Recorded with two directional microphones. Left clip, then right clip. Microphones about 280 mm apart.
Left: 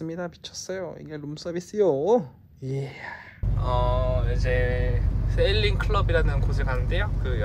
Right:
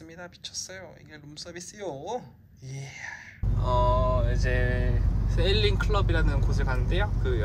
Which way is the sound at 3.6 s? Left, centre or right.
Centre.